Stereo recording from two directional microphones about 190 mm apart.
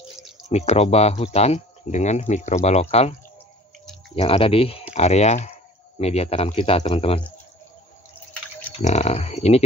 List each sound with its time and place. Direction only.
0.5 s speech: 35° left (ahead or behind)
8.8 s speech: 35° left (ahead or behind)